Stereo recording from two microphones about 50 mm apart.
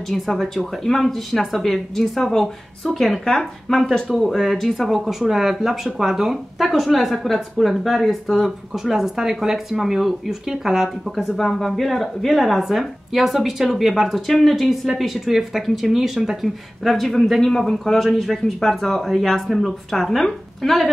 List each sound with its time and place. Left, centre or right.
0.1 s speech: centre